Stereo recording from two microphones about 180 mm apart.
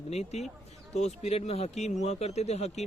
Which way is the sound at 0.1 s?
35° left (ahead or behind).